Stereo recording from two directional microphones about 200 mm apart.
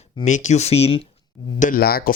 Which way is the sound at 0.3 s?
35° left (ahead or behind).